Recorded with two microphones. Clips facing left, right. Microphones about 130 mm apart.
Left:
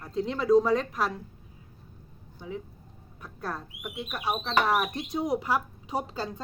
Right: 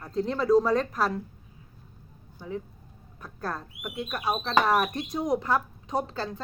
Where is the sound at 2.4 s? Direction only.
Centre (ahead or behind).